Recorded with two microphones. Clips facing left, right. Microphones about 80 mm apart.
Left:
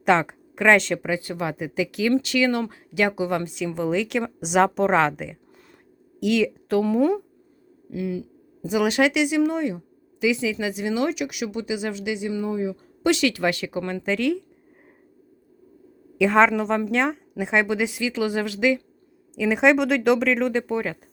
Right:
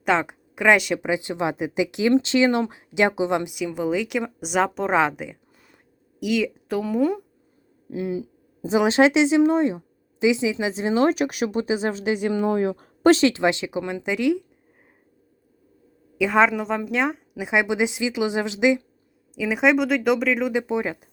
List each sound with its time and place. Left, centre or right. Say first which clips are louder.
0.0 s a woman's voice: left 2 dB; centre
7.9 s speech: right 1 dB; right
12.4 s speech: right 4 dB; right
13.0 s speech: right 5 dB; right; by 14.4 s centre
16.1 s speech: left 1 dB; centre
19.3 s speech: left 1 dB; centre